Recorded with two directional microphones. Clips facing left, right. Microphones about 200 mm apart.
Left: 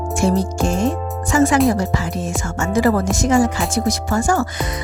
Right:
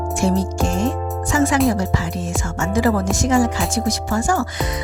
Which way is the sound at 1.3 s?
50° left (ahead or behind).